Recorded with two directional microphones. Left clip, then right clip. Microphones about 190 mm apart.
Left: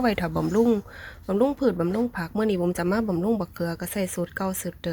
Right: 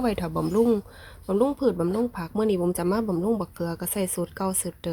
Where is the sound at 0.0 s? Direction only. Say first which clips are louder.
Left 2 dB; 5° left (ahead or behind).